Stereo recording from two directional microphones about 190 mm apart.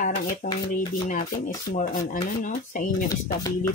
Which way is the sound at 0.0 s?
50° left (ahead or behind).